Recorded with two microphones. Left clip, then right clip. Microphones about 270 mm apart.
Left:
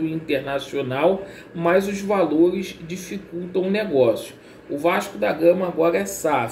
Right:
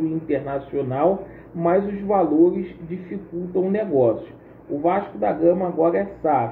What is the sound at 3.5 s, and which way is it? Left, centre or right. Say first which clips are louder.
Speech: even; centre.